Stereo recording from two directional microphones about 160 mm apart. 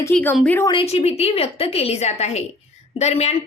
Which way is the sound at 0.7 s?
35° left (ahead or behind).